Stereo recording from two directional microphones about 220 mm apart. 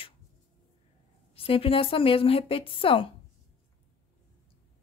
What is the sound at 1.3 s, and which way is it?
Speech, 25° left (ahead or behind).